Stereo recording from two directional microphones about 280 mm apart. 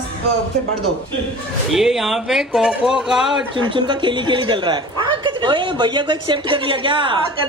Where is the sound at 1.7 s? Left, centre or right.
Centre.